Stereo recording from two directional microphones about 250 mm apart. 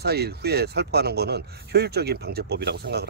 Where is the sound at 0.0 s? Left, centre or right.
Right.